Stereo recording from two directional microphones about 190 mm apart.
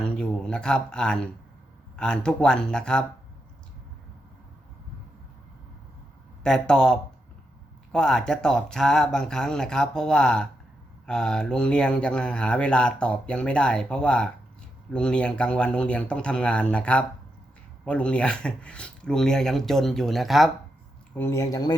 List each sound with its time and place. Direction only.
0.0 s speech: 5° left (ahead or behind)
6.4 s speech: 5° left (ahead or behind)
21.2 s speech: 15° left (ahead or behind)